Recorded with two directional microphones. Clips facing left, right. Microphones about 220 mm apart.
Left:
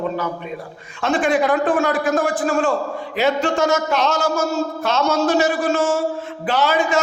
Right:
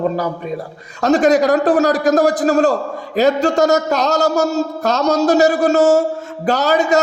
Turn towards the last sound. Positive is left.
turn(degrees=-40)  # may be behind; listen again after turning